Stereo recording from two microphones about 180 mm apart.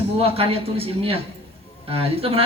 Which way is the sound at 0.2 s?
30° right (ahead or behind).